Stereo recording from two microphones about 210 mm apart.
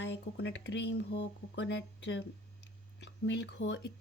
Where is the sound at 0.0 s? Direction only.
55° left (ahead or behind).